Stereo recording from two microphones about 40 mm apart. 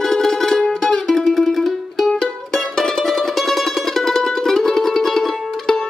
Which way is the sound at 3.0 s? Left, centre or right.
Centre.